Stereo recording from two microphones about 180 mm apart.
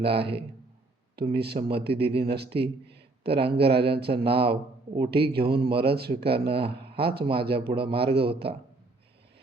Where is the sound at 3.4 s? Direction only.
65° right (ahead or behind).